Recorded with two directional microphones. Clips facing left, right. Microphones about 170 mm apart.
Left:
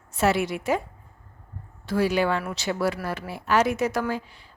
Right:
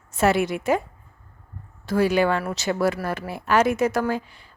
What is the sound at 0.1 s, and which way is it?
Speech, 50° right (ahead or behind).